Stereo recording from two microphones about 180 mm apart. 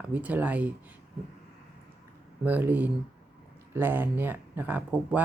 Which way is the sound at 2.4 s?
10° right (ahead or behind).